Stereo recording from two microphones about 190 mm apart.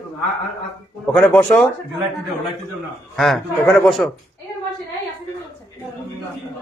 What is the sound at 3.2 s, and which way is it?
Speech, centre (ahead or behind).